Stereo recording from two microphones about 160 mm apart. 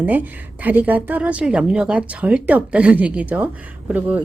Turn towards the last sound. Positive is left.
turn(degrees=-10)  # may be behind; listen again after turning